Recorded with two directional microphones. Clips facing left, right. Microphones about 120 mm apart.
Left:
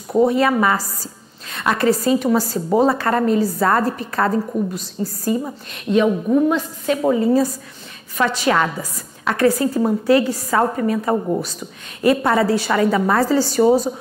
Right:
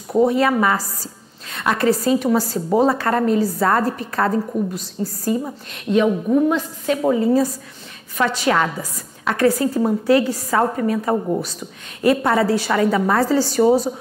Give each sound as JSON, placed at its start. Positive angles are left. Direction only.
{"t": 0.3, "sound": "a woman's voice", "side_deg": 20}
{"t": 5.2, "sound": "a woman's voice", "side_deg": 20}
{"t": 12.0, "sound": "a woman's voice", "side_deg": 20}